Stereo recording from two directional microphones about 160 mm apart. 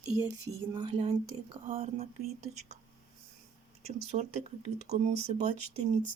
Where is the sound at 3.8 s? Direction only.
40° right (ahead or behind).